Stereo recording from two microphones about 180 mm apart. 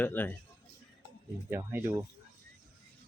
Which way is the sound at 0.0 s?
10° left (ahead or behind).